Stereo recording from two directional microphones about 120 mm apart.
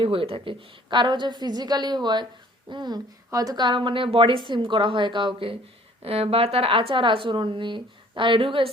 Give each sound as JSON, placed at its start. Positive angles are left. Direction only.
{"t": 0.0, "sound": "a woman's voice", "side_deg": -50}
{"t": 6.0, "sound": "a woman's voice", "side_deg": -55}